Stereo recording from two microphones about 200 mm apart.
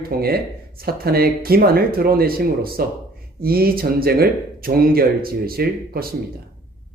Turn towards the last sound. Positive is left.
turn(degrees=-50)  # may be behind; listen again after turning